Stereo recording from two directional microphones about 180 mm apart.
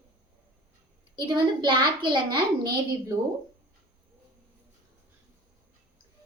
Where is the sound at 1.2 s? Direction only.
25° right (ahead or behind).